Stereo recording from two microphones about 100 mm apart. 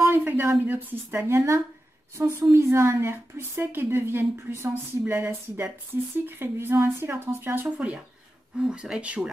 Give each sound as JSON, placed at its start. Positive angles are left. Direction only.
{"t": 0.0, "sound": "a woman's voice", "side_deg": -20}